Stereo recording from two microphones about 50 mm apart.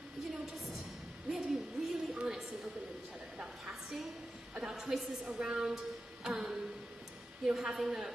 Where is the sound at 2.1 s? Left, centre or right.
Centre.